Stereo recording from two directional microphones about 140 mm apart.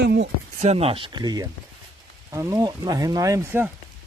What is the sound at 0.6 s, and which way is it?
Speech, 50° right (ahead or behind).